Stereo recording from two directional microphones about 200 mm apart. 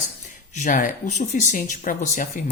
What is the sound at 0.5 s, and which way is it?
Speech, 40° left (ahead or behind).